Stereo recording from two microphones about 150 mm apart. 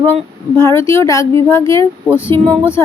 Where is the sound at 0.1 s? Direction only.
15° left (ahead or behind).